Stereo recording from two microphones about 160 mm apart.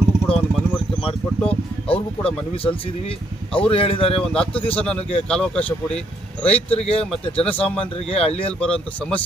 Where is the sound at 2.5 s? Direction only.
35° left (ahead or behind).